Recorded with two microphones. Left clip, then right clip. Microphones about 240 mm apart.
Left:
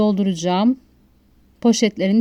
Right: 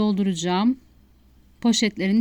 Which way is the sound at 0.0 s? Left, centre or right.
Centre.